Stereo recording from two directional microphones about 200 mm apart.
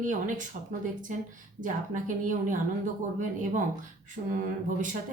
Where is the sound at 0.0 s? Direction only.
40° right (ahead or behind).